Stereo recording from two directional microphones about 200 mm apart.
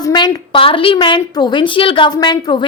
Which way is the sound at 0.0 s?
20° left (ahead or behind).